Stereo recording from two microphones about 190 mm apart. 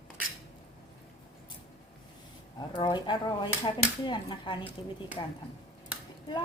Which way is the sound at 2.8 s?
25° left (ahead or behind).